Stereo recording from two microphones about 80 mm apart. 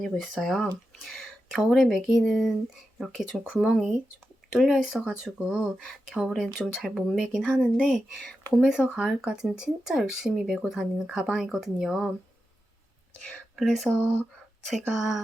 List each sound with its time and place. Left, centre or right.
0.3 s speech: centre
8.6 s speech: centre
13.1 s speech: centre